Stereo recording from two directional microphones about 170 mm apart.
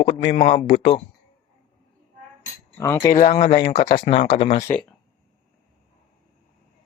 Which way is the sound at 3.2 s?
45° left (ahead or behind).